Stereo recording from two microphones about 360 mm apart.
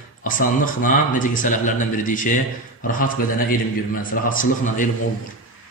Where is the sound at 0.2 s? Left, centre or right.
Left.